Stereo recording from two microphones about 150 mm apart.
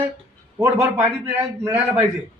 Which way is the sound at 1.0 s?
15° right (ahead or behind).